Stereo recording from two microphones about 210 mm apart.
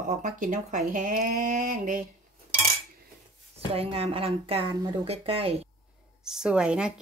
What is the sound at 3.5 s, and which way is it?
Speech, 25° right (ahead or behind).